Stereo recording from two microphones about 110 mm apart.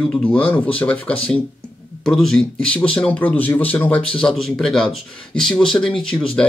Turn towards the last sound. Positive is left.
turn(degrees=5)  # may be behind; listen again after turning